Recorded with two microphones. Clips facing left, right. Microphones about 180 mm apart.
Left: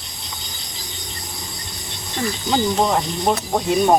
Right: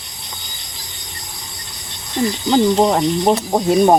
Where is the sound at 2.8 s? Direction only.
30° right (ahead or behind).